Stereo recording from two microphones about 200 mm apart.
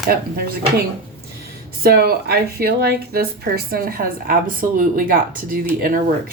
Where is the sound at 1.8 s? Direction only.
50° right (ahead or behind).